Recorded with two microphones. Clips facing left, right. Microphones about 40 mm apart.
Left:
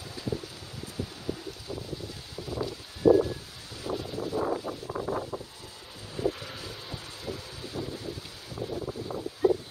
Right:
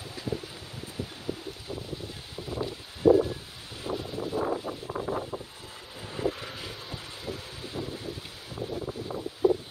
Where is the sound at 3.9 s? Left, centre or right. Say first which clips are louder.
Even; centre.